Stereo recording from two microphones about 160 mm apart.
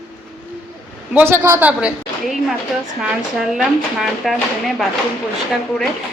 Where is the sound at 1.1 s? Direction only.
15° right (ahead or behind).